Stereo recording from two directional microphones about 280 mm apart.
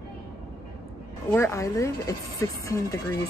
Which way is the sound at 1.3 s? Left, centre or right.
Centre.